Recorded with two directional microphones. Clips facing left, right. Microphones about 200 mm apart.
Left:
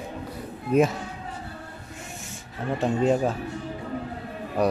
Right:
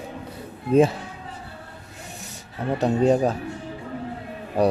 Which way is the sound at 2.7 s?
40° right (ahead or behind).